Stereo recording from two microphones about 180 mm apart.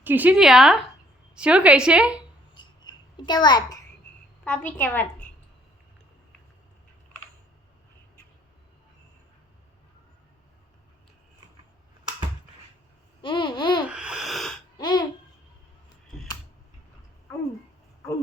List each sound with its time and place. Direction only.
0.0 s a woman's voice: 10° right (ahead or behind)
2.6 s a sound: 25° left (ahead or behind)
4.4 s a woman's voice: 10° left (ahead or behind)
13.2 s babbling: 25° left (ahead or behind)
13.8 s sneeze: 5° right (ahead or behind)
14.8 s babbling: 25° left (ahead or behind)